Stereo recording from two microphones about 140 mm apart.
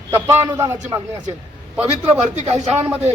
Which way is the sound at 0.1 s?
20° right (ahead or behind).